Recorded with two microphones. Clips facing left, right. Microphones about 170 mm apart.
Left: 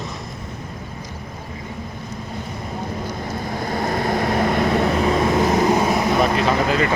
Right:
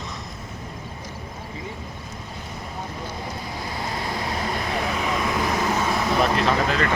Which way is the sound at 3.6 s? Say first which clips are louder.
Left 9 dB; 50° left (ahead or behind).